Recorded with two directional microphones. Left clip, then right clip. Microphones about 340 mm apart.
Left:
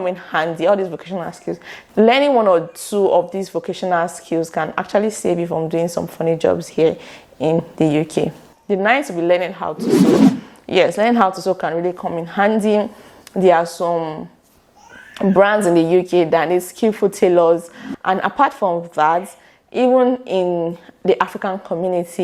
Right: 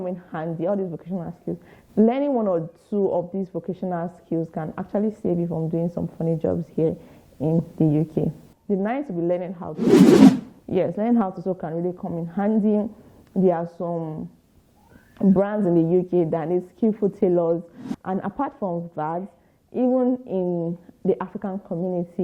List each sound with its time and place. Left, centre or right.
0.0 s a woman's voice: centre
18.6 s speech: left
18.9 s a woman's voice: centre
20.5 s speech: left
21.0 s a woman's voice: centre